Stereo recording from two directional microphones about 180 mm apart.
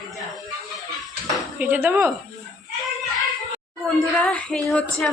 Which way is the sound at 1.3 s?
5° right (ahead or behind).